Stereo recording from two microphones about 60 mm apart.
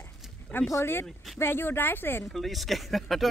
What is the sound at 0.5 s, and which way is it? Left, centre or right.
Speech, left.